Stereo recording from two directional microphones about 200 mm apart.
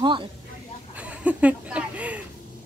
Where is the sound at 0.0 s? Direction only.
25° right (ahead or behind).